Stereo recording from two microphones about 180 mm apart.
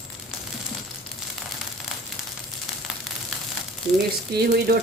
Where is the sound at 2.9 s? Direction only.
Centre (ahead or behind).